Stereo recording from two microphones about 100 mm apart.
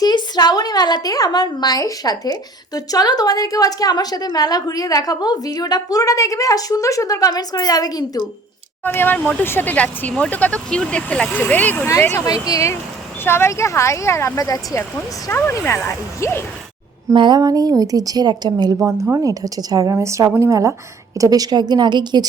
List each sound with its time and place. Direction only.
0.0 s a woman's voice: 45° left (ahead or behind)
8.8 s speech: 20° left (ahead or behind)
12.2 s a woman's voice: 40° left (ahead or behind)
14.8 s speech: 25° left (ahead or behind)
17.2 s a woman's voice: 45° right (ahead or behind)
19.1 s a woman's voice: 35° right (ahead or behind)